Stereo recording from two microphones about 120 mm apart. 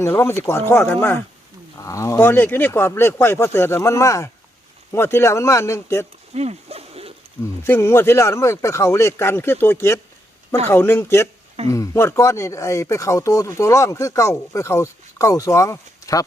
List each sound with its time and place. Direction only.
0.0 s speech: 20° left (ahead or behind)
6.3 s a sound: 60° right (ahead or behind)
7.6 s speech: 20° left (ahead or behind)